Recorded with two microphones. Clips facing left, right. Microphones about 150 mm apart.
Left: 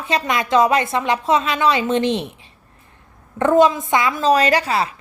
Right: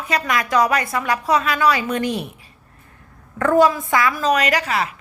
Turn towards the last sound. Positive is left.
turn(degrees=30)  # may be behind; listen again after turning